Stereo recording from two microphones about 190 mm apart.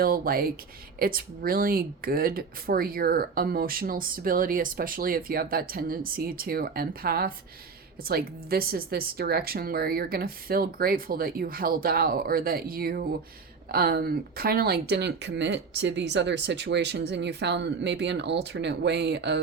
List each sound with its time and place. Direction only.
0.0 s speech: 50° right (ahead or behind)